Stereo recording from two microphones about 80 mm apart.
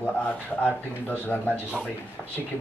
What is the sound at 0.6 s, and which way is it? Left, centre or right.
Speech, left.